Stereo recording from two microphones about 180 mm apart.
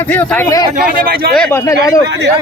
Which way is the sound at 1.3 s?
5° left (ahead or behind).